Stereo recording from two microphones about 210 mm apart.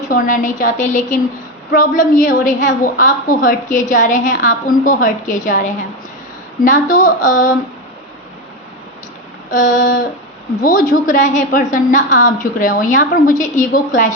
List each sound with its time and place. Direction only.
0.1 s a woman's voice: 40° left (ahead or behind)
6.7 s a woman's voice: 40° left (ahead or behind)
9.5 s a woman's voice: 35° left (ahead or behind)